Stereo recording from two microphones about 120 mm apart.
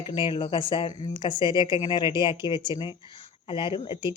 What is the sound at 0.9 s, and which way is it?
A woman's voice, 30° left (ahead or behind).